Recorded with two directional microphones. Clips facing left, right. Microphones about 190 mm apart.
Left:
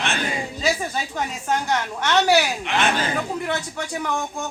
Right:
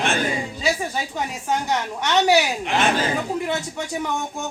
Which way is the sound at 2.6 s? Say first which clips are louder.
Right 2 dB; 40° right (ahead or behind).